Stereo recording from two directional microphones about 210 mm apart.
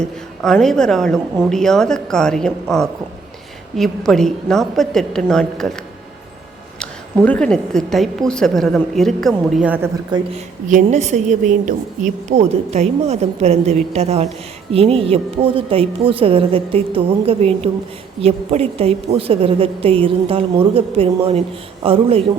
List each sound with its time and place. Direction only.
0.0 s a woman's voice: centre (ahead or behind)
6.7 s a woman's voice: 5° left (ahead or behind)
10.1 s a woman's voice: 20° right (ahead or behind)
10.7 s a woman's voice: 35° right (ahead or behind)